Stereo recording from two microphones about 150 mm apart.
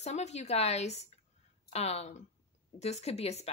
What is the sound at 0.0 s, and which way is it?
Speech, 50° left (ahead or behind).